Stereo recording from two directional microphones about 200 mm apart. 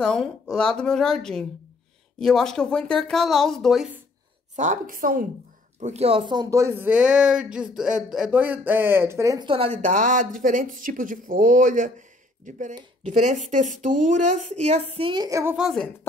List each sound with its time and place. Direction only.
0.0 s speech: 5° left (ahead or behind)
4.6 s a woman's voice: 40° right (ahead or behind)
5.8 s a woman's voice: 35° right (ahead or behind); by 15.5 s 15° right (ahead or behind)
15.5 s speech: centre (ahead or behind)